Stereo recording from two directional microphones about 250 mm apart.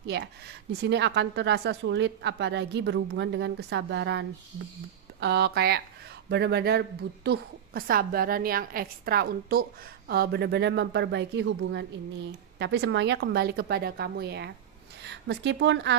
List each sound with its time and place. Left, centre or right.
0.0 s a woman's voice: right